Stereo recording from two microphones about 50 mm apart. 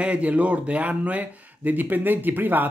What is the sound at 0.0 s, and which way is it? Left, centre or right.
Speech, right.